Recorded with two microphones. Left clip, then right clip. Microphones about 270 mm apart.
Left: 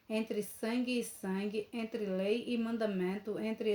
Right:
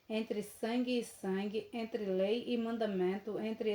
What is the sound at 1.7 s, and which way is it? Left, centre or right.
Speech, left.